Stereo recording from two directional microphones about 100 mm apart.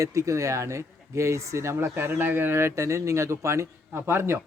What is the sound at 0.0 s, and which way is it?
Speech, 30° right (ahead or behind).